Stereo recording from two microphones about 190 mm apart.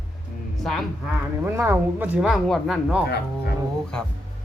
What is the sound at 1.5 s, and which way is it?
Speech, 10° right (ahead or behind).